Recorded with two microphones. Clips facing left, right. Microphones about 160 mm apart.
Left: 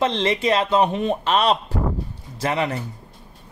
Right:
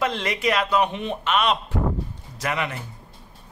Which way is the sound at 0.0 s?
30° left (ahead or behind).